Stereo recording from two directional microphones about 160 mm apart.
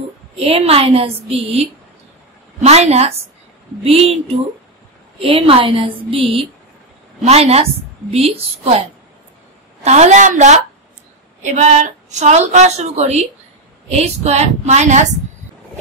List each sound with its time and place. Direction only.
0.4 s a woman's voice: 40° right (ahead or behind)
5.2 s a woman's voice: 35° right (ahead or behind)
9.8 s a woman's voice: 45° right (ahead or behind)